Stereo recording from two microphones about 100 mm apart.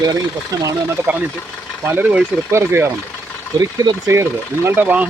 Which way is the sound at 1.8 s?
20° right (ahead or behind).